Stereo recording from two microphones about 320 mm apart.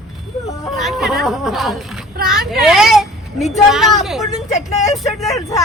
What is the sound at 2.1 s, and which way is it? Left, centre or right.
Speech, right.